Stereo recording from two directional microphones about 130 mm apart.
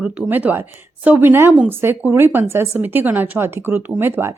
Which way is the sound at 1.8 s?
15° right (ahead or behind).